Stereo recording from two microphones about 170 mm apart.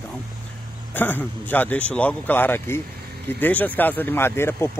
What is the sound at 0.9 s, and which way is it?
Speech, 10° left (ahead or behind).